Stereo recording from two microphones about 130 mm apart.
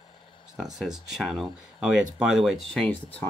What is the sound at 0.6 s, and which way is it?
Speech, 5° right (ahead or behind).